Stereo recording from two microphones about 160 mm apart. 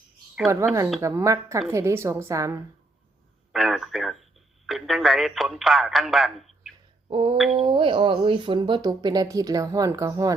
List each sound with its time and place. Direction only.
0.4 s a woman's voice: 15° right (ahead or behind)
3.5 s a man's voice: centre (ahead or behind)
7.1 s a sound: 30° right (ahead or behind)
7.5 s speech: 30° right (ahead or behind)